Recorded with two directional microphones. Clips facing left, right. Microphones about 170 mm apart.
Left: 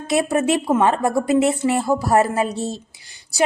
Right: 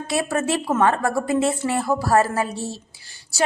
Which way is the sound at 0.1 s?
20° left (ahead or behind).